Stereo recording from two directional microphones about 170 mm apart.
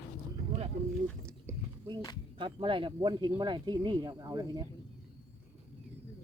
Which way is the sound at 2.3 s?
30° right (ahead or behind).